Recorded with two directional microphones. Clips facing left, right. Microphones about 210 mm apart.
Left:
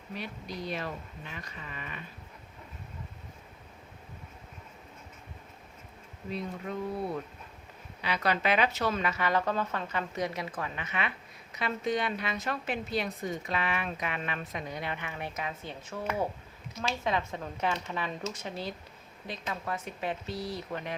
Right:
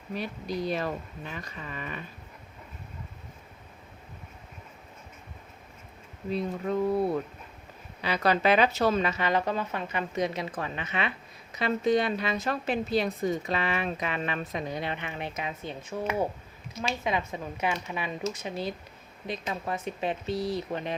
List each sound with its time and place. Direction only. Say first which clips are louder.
0.2 s a woman's voice: right 7 dB; 40° right (ahead or behind)
6.3 s a woman's voice: right 7 dB; 35° right (ahead or behind); by 16.0 s 20° right (ahead or behind)
17.0 s speech: even; 10° right (ahead or behind)